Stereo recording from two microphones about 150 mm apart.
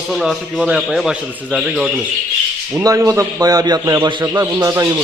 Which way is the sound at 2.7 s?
20° right (ahead or behind).